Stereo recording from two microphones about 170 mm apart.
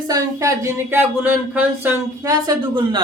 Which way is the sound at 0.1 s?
20° right (ahead or behind).